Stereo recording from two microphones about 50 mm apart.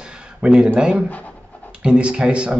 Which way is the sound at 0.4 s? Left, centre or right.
Right.